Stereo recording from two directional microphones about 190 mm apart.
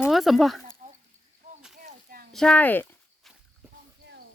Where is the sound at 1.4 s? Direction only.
40° right (ahead or behind).